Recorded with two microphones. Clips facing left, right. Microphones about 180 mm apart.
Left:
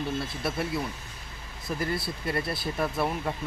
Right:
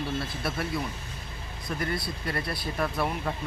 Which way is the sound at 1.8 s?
25° left (ahead or behind).